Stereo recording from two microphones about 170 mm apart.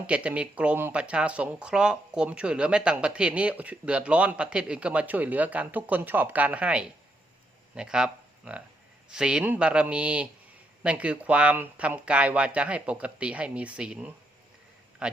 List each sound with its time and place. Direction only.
0.1 s a man's voice: 5° right (ahead or behind)